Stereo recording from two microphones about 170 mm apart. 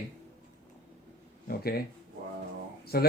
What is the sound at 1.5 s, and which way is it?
Speech, 65° left (ahead or behind).